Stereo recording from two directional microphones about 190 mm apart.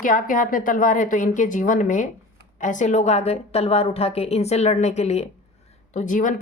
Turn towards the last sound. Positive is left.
turn(degrees=40)  # may be behind; listen again after turning